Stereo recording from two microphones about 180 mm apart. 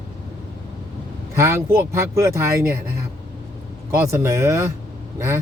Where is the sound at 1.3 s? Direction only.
15° right (ahead or behind).